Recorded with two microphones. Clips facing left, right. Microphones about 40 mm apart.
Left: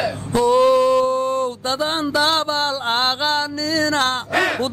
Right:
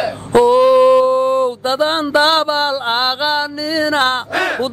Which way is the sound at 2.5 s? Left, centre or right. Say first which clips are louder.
Right 4 dB; centre.